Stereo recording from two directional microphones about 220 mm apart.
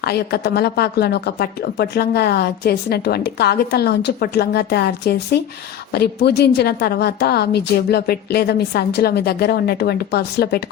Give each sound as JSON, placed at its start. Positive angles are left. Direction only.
{"t": 0.0, "sound": "a woman's voice", "side_deg": 45}